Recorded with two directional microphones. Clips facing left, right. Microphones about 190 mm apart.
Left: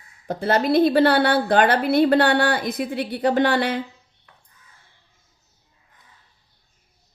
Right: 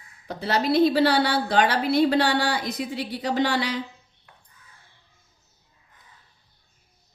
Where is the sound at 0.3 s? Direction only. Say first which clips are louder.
Left 4 dB; 50° left (ahead or behind).